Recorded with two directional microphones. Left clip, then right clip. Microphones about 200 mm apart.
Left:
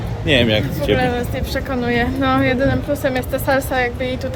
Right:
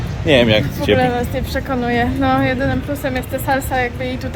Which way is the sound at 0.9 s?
Centre (ahead or behind).